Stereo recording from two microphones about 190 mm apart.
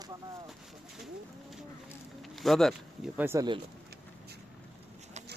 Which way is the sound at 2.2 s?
Centre (ahead or behind).